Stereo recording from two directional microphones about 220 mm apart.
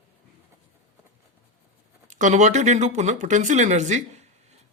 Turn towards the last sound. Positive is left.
turn(degrees=-35)  # may be behind; listen again after turning